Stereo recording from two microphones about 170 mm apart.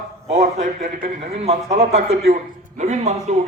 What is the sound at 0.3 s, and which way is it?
Speech, 45° right (ahead or behind).